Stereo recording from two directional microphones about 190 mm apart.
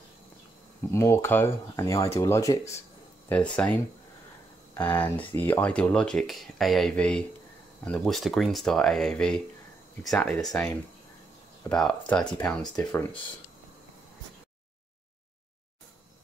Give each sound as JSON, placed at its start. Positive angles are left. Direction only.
{"t": 0.9, "sound": "speech", "side_deg": 15}
{"t": 4.7, "sound": "speech", "side_deg": 10}
{"t": 11.7, "sound": "speech", "side_deg": 5}